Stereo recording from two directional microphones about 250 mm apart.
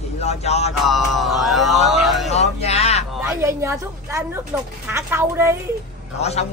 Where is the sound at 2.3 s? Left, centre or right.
Left.